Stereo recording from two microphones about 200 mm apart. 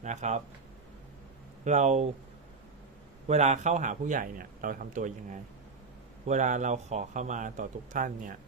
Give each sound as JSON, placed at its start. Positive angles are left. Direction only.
{"t": 0.0, "sound": "a man's voice", "side_deg": -35}
{"t": 1.6, "sound": "a man's voice", "side_deg": -35}
{"t": 3.2, "sound": "a man's voice", "side_deg": -35}